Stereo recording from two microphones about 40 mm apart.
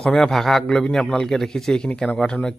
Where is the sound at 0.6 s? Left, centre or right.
Centre.